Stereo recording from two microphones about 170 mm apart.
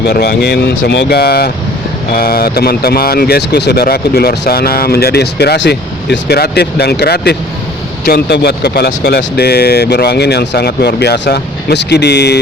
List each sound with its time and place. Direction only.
0.0 s speech: 70° left (ahead or behind)